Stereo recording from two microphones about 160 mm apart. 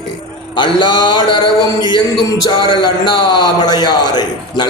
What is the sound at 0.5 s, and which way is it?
Speech, 30° left (ahead or behind).